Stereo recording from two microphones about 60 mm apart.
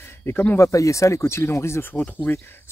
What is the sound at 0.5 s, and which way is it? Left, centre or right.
Speech, left.